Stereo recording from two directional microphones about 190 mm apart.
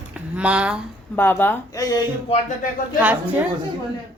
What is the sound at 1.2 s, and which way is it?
Speech, 10° left (ahead or behind).